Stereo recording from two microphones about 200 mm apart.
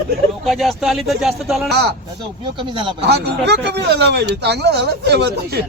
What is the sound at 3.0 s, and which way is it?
Speech, 55° right (ahead or behind).